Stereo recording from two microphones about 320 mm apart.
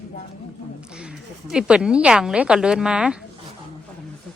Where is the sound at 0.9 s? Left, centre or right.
Centre.